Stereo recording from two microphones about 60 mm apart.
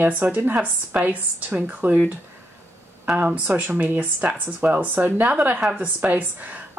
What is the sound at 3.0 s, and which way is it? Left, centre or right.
Speech, right.